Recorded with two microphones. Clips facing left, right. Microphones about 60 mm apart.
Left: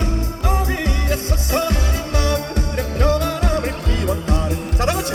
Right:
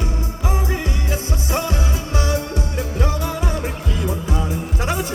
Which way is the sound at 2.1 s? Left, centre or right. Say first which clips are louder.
Left 2 dB; left.